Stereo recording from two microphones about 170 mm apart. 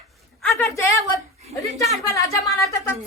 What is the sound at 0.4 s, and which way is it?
Speech, 15° left (ahead or behind).